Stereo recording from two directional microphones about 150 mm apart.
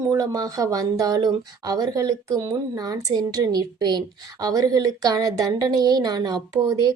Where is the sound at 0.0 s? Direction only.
25° right (ahead or behind).